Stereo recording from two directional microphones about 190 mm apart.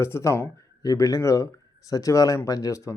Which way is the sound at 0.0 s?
15° left (ahead or behind).